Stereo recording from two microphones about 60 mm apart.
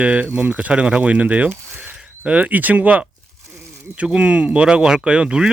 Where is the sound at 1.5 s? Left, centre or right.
Right.